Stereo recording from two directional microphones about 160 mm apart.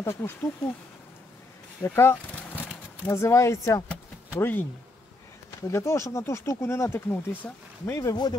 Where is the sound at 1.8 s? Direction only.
15° left (ahead or behind).